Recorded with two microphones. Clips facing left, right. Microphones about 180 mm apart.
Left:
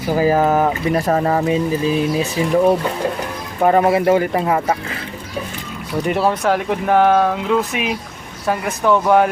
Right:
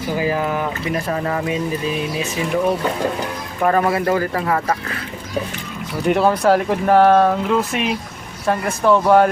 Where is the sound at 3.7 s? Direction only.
20° left (ahead or behind).